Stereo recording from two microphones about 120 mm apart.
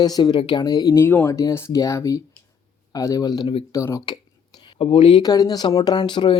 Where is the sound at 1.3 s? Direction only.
25° left (ahead or behind).